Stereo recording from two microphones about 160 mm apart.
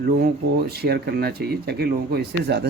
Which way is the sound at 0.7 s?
85° right.